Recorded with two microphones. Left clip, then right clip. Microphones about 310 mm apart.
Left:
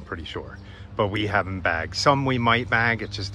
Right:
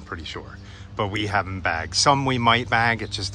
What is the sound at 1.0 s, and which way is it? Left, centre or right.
Speech, centre.